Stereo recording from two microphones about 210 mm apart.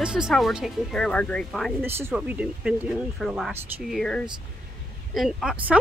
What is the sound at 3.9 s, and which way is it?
Speech, 5° left (ahead or behind).